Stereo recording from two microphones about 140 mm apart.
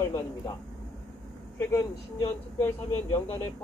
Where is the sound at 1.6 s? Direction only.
20° left (ahead or behind).